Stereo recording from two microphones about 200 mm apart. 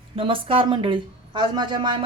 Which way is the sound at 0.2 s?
25° right (ahead or behind).